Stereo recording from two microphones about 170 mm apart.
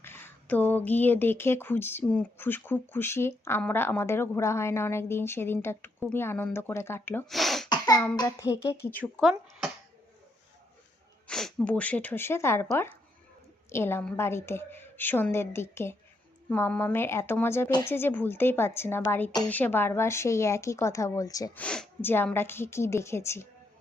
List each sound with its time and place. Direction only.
0.0 s speech: 15° left (ahead or behind)
7.3 s throat clearing: centre (ahead or behind)
7.7 s cough: 25° left (ahead or behind)
8.1 s speech: 20° left (ahead or behind)
11.3 s speech: 5° left (ahead or behind)
13.7 s a woman's voice: 15° left (ahead or behind)
21.6 s speech: 5° left (ahead or behind)